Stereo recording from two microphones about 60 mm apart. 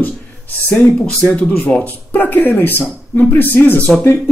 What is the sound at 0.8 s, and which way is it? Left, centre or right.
Speech, centre.